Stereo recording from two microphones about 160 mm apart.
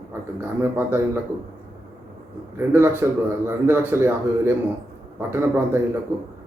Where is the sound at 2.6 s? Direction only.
15° right (ahead or behind).